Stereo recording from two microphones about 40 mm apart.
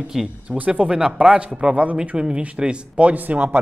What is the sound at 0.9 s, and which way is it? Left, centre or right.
A man's voice, centre.